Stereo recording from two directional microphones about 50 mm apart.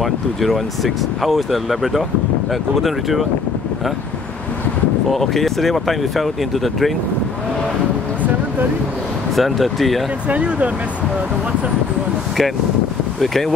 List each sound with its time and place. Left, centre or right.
0.0 s speech: centre
5.1 s speech: centre
9.3 s speech: centre
10.2 s speech: right
13.2 s speech: centre